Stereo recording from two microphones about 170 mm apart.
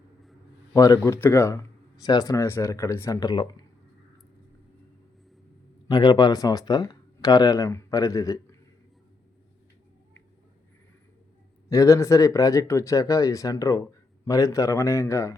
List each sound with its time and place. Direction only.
0.7 s speech: 20° left (ahead or behind)
5.9 s speech: 25° left (ahead or behind)
11.7 s speech: 20° left (ahead or behind)